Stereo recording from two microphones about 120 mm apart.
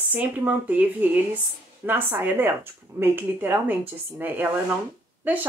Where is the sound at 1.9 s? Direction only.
15° right (ahead or behind).